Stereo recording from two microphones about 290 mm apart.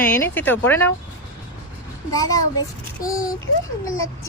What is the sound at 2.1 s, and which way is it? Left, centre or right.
A child's voice, centre.